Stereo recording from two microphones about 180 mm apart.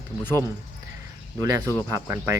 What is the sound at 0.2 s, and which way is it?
Speech, 10° left (ahead or behind).